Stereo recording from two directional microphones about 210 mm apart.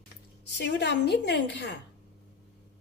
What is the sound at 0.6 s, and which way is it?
A woman's voice, 55° left (ahead or behind).